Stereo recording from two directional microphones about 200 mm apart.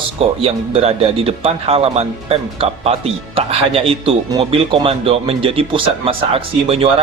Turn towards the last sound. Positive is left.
turn(degrees=-25)  # may be behind; listen again after turning